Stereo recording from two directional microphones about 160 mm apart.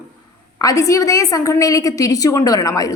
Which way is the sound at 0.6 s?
20° left (ahead or behind).